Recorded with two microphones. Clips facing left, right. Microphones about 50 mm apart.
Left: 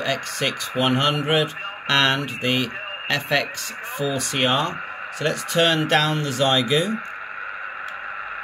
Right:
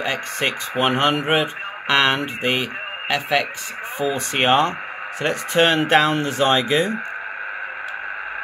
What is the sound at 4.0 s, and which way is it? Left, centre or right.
Speech, right.